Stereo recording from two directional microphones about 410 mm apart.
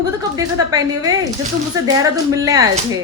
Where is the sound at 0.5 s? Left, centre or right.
Centre.